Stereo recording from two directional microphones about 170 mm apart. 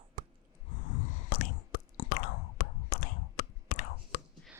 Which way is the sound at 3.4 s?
55° left (ahead or behind).